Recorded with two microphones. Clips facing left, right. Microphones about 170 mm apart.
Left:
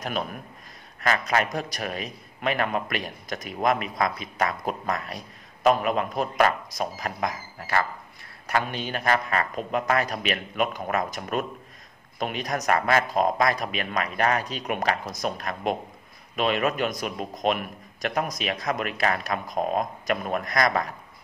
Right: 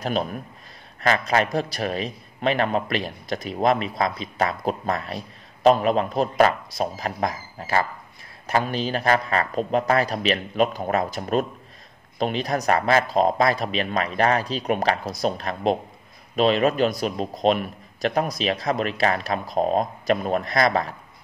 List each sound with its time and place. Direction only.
0.0 s a man's voice: 30° right (ahead or behind)